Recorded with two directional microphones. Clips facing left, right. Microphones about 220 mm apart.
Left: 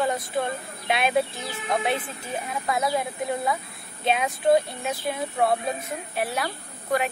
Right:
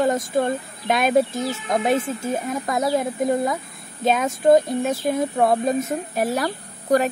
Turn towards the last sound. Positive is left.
turn(degrees=-40)  # may be behind; listen again after turning